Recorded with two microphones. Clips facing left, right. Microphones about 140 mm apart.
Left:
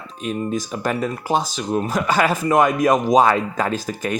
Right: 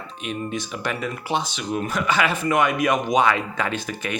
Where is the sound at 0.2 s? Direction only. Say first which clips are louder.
Left 5 dB; 40° left (ahead or behind).